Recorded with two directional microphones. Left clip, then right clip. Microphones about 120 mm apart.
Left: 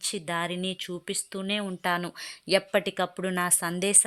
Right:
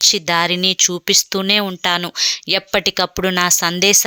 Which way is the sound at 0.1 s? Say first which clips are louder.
Right 15 dB; 30° right (ahead or behind).